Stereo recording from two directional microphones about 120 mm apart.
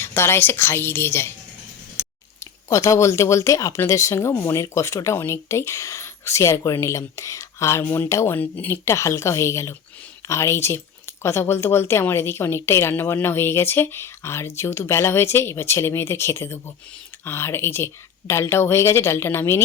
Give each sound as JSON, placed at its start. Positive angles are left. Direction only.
{"t": 0.0, "sound": "speech", "side_deg": 20}
{"t": 2.4, "sound": "speech", "side_deg": 25}